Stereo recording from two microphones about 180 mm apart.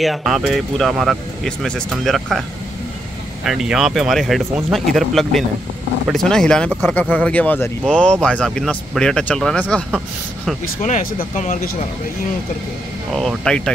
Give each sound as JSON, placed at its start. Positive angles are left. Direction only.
{"t": 0.0, "sound": "speech", "side_deg": 0}
{"t": 3.4, "sound": "speech", "side_deg": -5}
{"t": 10.8, "sound": "speech", "side_deg": 45}
{"t": 13.1, "sound": "speech", "side_deg": 0}